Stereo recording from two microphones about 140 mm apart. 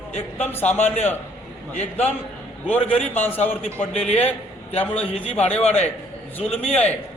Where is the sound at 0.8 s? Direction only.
55° left (ahead or behind).